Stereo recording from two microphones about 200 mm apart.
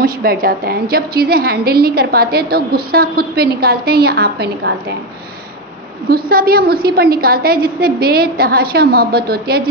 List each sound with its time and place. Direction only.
0.0 s a woman's voice: 45° right (ahead or behind)
6.0 s a woman's voice: 50° right (ahead or behind)